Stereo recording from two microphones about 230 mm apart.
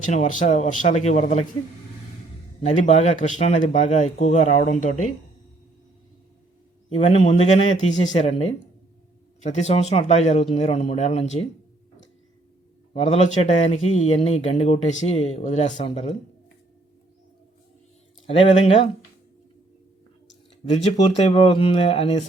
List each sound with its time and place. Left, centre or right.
0.1 s speech: left
2.6 s speech: left
6.9 s speech: left
12.9 s speech: left
18.3 s speech: left
20.7 s speech: left